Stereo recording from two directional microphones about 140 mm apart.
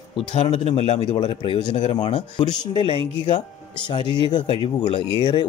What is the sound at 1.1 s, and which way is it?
Speech, 35° left (ahead or behind).